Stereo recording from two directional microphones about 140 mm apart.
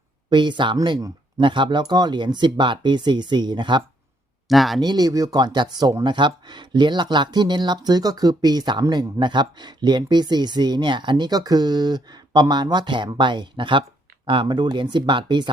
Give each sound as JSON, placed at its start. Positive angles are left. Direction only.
{"t": 0.3, "sound": "speech", "side_deg": -35}
{"t": 1.4, "sound": "speech", "side_deg": -35}
{"t": 4.4, "sound": "speech", "side_deg": 0}
{"t": 4.8, "sound": "speech", "side_deg": -30}